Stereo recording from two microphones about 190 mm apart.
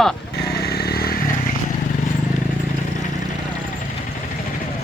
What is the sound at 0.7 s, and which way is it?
Motorcycle, 55° left (ahead or behind).